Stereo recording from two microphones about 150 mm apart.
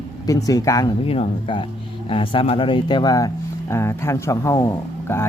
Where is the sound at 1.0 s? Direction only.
40° left (ahead or behind).